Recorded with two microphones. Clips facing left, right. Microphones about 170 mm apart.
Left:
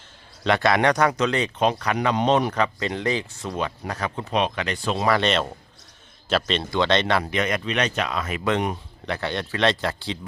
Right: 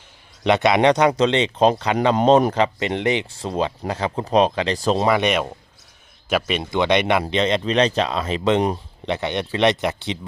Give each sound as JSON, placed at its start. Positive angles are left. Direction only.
{"t": 0.4, "sound": "speech", "side_deg": -20}
{"t": 2.1, "sound": "speech", "side_deg": -40}
{"t": 2.6, "sound": "speech", "side_deg": -25}
{"t": 5.0, "sound": "speech", "side_deg": -15}